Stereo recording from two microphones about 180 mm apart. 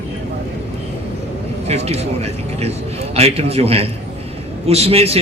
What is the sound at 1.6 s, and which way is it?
Speech, 35° right (ahead or behind).